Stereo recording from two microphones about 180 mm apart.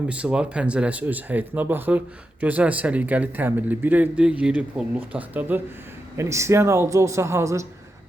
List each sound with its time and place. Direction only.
0.1 s speech: 5° right (ahead or behind)